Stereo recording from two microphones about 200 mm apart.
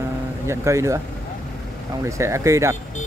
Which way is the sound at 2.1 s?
15° right (ahead or behind).